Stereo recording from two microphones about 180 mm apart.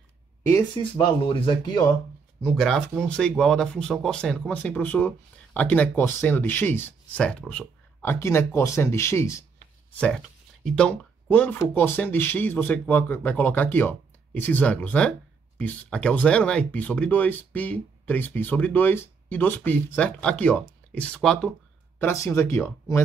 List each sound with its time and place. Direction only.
0.5 s speech: 20° left (ahead or behind)
2.4 s speech: centre (ahead or behind)
9.9 s speech: 5° left (ahead or behind)
21.9 s speech: 15° left (ahead or behind)